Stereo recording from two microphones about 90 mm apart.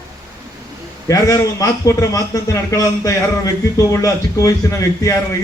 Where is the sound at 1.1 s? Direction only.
40° left (ahead or behind).